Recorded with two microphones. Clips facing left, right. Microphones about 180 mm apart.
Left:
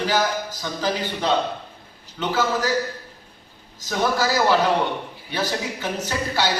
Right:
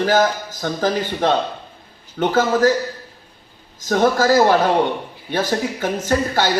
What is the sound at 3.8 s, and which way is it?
A man's voice, 50° right (ahead or behind).